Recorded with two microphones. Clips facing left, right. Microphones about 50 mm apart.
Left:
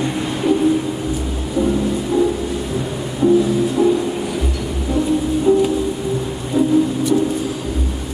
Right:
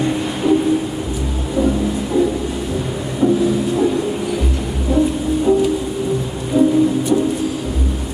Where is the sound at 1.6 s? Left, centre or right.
Right.